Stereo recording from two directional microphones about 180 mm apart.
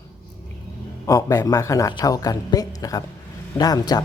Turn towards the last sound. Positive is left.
turn(degrees=20)  # may be behind; listen again after turning